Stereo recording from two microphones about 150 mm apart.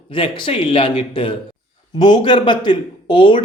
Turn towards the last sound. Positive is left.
turn(degrees=35)  # may be behind; listen again after turning